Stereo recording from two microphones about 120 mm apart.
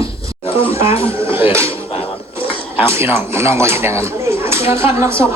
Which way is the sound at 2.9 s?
20° right (ahead or behind).